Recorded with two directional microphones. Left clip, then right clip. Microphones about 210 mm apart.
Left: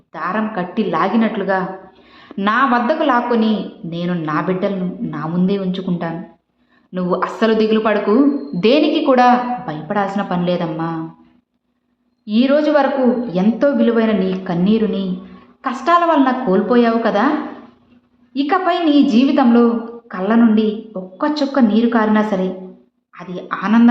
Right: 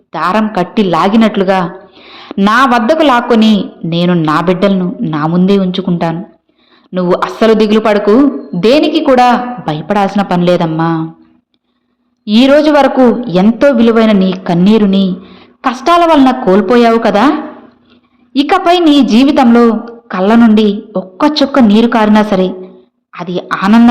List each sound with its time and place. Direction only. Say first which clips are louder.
0.1 s a man's voice: right 9 dB; 35° right (ahead or behind)
12.2 s a man's voice: right 8 dB; 35° right (ahead or behind)
18.3 s a man's voice: right 8 dB; 35° right (ahead or behind)